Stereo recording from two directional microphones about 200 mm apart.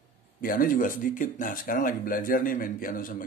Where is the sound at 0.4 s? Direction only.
45° left (ahead or behind).